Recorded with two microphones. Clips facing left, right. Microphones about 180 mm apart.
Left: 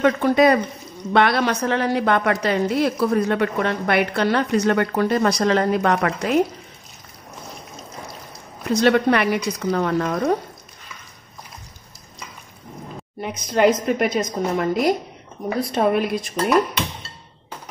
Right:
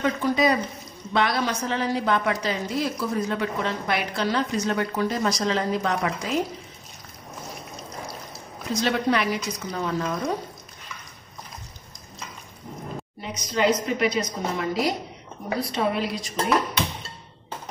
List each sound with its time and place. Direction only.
0.0 s a woman's voice: 65° left (ahead or behind)
8.6 s a woman's voice: 60° left (ahead or behind)
13.2 s a woman's voice: 55° left (ahead or behind)